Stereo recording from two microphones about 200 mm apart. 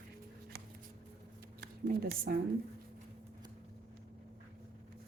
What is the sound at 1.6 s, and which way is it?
Speech, 55° right (ahead or behind).